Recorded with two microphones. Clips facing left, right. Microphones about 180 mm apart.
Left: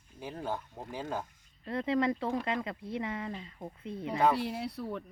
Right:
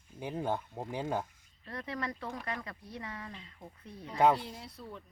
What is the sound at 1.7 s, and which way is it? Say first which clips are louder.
Speech: left 9 dB; 25° left (ahead or behind).